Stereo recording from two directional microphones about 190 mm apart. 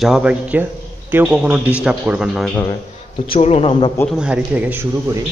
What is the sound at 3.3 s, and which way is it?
Speech, 30° left (ahead or behind).